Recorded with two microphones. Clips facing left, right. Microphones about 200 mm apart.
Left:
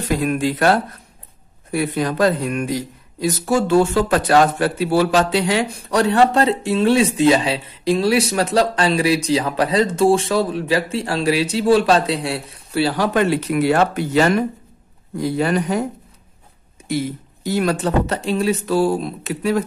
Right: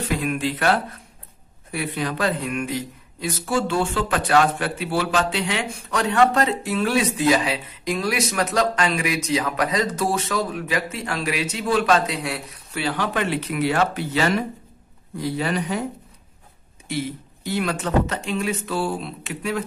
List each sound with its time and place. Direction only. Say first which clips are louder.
0.1 s speech: left 6 dB; 40° left (ahead or behind)
16.8 s speech: left 5 dB; 40° left (ahead or behind)